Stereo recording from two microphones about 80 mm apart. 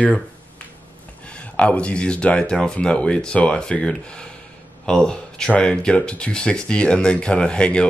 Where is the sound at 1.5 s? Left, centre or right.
Centre.